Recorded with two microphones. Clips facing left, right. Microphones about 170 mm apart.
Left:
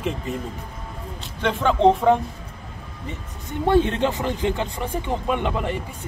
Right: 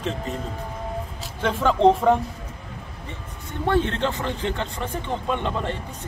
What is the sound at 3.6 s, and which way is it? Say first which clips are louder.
Speech: left 3 dB; 15° left (ahead or behind).